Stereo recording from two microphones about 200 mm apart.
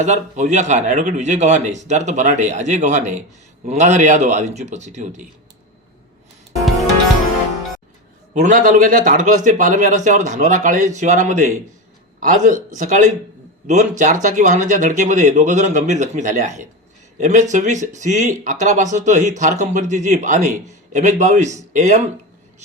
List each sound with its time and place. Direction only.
0.0 s speech: 35° right (ahead or behind)
8.3 s speech: 40° right (ahead or behind)